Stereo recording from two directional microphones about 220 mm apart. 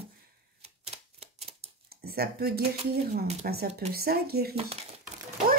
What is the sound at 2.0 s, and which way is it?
Speech, 45° right (ahead or behind).